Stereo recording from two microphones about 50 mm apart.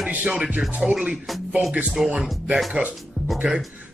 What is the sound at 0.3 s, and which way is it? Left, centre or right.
Speech, centre.